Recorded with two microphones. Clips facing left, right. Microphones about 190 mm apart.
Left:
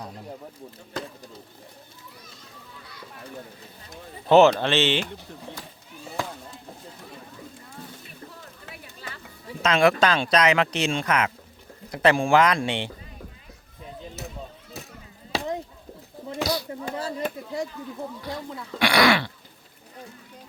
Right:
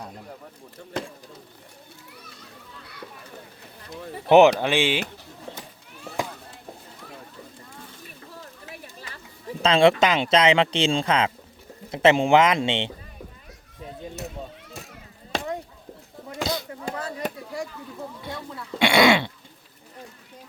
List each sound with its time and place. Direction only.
4.3 s speech: 15° right (ahead or behind)
9.6 s speech: 30° right (ahead or behind)
10.0 s speech: 20° right (ahead or behind)
16.4 s chop: 25° right (ahead or behind)
16.9 s chop: 25° left (ahead or behind)
18.8 s speech: 25° right (ahead or behind)